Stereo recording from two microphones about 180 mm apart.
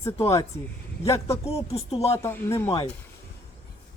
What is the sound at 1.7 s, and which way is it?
Speech, 35° left (ahead or behind).